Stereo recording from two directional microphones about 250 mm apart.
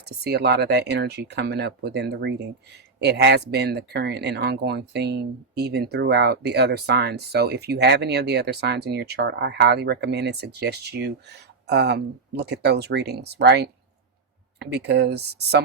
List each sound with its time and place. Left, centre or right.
0.3 s speech: right